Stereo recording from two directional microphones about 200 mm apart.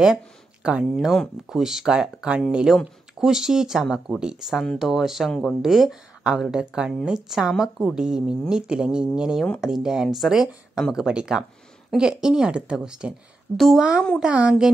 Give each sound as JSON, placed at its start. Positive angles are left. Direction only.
{"t": 0.0, "sound": "a woman's voice", "side_deg": -5}